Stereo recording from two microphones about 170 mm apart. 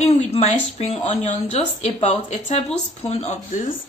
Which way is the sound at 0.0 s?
40° left (ahead or behind).